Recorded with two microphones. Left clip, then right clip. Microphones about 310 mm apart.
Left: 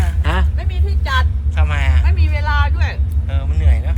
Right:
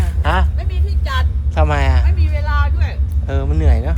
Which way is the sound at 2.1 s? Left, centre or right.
Centre.